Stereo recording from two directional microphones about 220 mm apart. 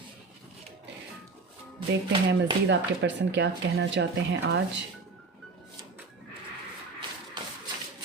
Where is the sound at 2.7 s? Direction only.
50° right (ahead or behind).